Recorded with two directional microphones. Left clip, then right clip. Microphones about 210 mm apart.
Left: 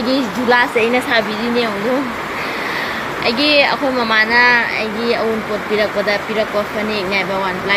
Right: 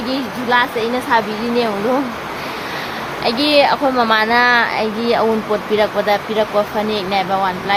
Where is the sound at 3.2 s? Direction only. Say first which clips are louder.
Even; 15° right (ahead or behind).